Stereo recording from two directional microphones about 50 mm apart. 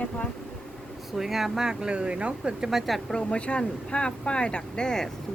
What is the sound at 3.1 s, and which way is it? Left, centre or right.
Speech, left.